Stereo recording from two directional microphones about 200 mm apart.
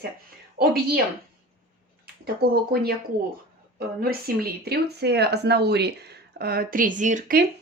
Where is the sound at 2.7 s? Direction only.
50° right (ahead or behind).